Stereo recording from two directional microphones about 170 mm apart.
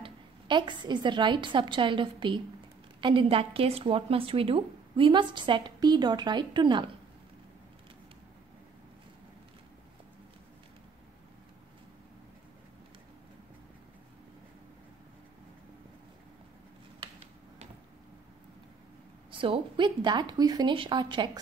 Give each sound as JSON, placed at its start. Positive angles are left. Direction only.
{"t": 0.0, "sound": "a woman's voice", "side_deg": -25}
{"t": 19.3, "sound": "a woman's voice", "side_deg": -30}